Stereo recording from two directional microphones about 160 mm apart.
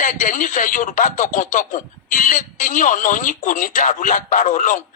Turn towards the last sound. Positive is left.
turn(degrees=50)  # may be behind; listen again after turning